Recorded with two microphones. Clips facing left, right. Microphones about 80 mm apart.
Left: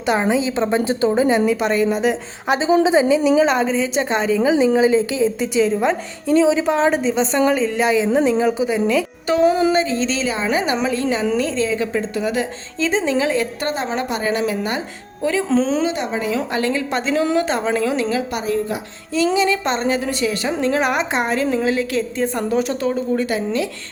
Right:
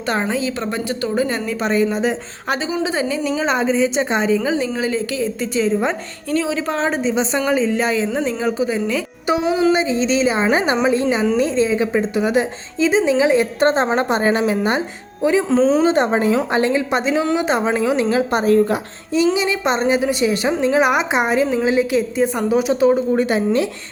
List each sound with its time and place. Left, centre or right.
0.0 s a woman's voice: centre
1.5 s a woman's voice: centre
2.5 s a woman's voice: left
3.4 s a woman's voice: centre
4.4 s a woman's voice: centre
5.5 s a woman's voice: centre
6.2 s speech: centre
6.7 s a woman's voice: centre
9.2 s a woman's voice: centre
12.8 s a woman's voice: centre
15.4 s a woman's voice: centre
15.8 s a woman's voice: right
19.1 s a woman's voice: centre